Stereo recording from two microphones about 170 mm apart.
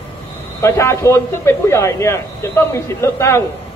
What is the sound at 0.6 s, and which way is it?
A man's voice, 15° left (ahead or behind).